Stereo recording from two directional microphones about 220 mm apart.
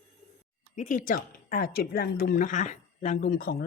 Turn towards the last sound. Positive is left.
turn(degrees=40)  # may be behind; listen again after turning